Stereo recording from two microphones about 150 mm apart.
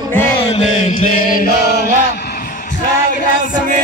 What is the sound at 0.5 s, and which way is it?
Chant, 45° left (ahead or behind).